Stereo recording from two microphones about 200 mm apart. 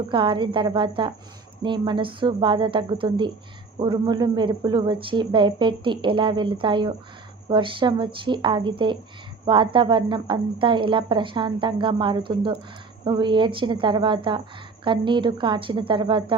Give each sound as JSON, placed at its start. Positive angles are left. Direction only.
{"t": 0.1, "sound": "a woman's voice", "side_deg": -25}